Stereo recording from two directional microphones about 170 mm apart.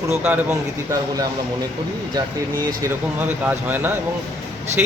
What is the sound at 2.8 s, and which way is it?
Speech, 10° right (ahead or behind).